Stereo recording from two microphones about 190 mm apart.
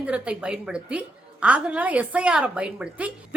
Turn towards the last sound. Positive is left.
turn(degrees=-5)  # may be behind; listen again after turning